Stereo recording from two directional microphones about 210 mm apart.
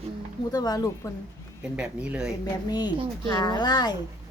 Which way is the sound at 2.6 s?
20° left (ahead or behind).